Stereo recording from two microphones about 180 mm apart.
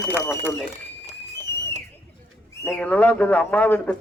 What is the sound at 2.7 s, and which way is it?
Speech, 5° left (ahead or behind).